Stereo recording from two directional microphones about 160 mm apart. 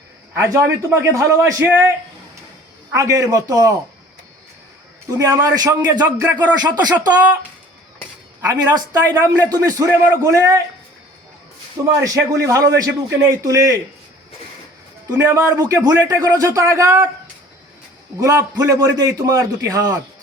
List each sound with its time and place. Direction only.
0.3 s speech: 20° right (ahead or behind)
2.9 s speech: 20° right (ahead or behind)
5.1 s speech: 20° right (ahead or behind)
8.4 s speech: 25° right (ahead or behind)
11.9 s speech: 20° right (ahead or behind)
15.1 s speech: 20° right (ahead or behind)
18.2 s speech: 20° right (ahead or behind)